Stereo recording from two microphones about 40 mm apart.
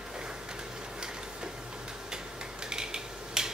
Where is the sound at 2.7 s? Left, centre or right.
Centre.